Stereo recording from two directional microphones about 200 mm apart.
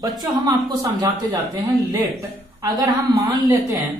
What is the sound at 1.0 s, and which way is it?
Speech, 20° right (ahead or behind).